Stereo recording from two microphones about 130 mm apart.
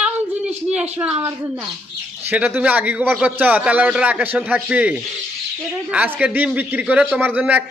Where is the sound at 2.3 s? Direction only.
10° right (ahead or behind).